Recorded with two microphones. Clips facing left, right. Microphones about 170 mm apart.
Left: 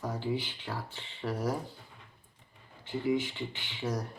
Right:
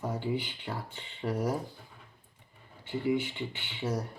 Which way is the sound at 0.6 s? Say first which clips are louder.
Right 1 dB; 15° right (ahead or behind).